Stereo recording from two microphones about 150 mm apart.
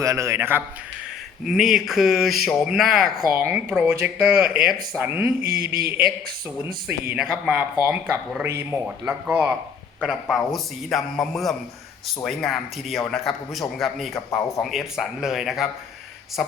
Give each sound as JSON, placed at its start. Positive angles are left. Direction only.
{"t": 0.0, "sound": "a man's voice", "side_deg": -20}
{"t": 1.5, "sound": "speech", "side_deg": -5}
{"t": 5.4, "sound": "a sound", "side_deg": -90}
{"t": 6.8, "sound": "speech", "side_deg": -10}